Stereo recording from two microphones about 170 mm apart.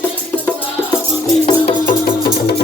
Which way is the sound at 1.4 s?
40° left (ahead or behind).